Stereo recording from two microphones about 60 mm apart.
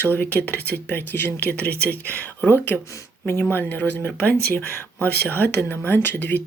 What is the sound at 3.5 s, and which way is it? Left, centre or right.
Speech, left.